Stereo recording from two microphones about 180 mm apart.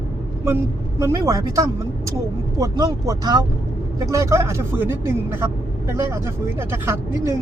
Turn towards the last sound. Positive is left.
turn(degrees=-15)  # may be behind; listen again after turning